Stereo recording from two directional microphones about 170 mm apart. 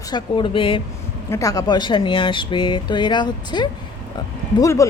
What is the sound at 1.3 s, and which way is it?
Speech, 20° left (ahead or behind).